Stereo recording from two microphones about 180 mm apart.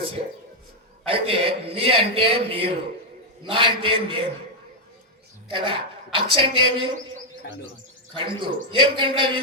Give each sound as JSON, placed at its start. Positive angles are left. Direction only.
{"t": 1.0, "sound": "a man's voice", "side_deg": -30}
{"t": 5.5, "sound": "a woman's voice", "side_deg": -30}
{"t": 8.1, "sound": "a woman's voice", "side_deg": -30}